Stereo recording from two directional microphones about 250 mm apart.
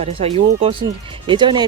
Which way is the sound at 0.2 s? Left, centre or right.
Right.